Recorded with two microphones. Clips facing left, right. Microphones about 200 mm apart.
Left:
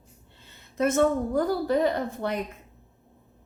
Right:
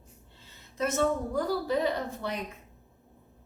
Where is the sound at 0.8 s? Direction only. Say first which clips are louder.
Left 5 dB; 55° left (ahead or behind).